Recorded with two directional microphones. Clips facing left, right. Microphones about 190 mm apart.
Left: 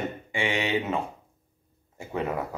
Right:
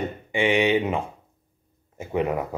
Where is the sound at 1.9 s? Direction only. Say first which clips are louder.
Right 5 dB; 15° right (ahead or behind).